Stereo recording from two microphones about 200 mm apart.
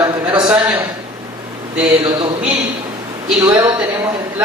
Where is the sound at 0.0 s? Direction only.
25° right (ahead or behind).